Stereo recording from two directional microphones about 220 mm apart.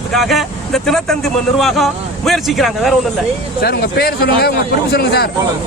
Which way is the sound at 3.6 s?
45° left (ahead or behind).